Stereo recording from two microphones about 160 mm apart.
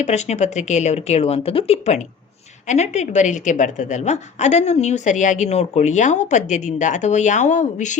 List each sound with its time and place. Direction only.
0.0 s a woman's voice: 45° left (ahead or behind)